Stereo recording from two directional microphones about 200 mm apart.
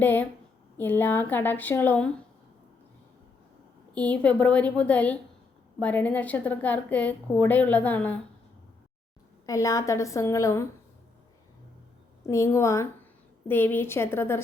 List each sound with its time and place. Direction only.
0.0 s a woman's voice: 10° left (ahead or behind)
3.9 s a woman's voice: 5° left (ahead or behind)
9.5 s a woman's voice: 15° left (ahead or behind)
12.2 s a woman's voice: 15° left (ahead or behind)